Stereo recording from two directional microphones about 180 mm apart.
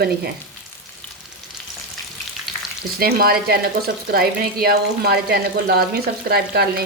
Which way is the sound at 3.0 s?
60° right (ahead or behind).